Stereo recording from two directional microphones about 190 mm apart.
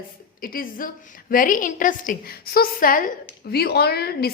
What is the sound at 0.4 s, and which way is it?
A woman's voice, 50° left (ahead or behind).